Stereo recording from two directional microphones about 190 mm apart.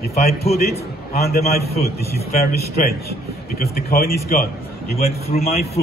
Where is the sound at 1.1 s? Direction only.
55° left (ahead or behind).